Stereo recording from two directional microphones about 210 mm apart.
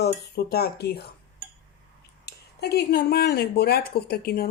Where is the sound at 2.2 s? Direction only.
50° left (ahead or behind).